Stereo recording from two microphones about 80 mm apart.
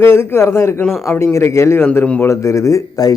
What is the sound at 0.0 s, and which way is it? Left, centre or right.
Speech, left.